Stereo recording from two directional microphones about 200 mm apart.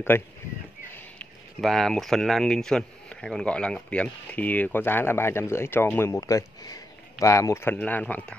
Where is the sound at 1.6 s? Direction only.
Centre (ahead or behind).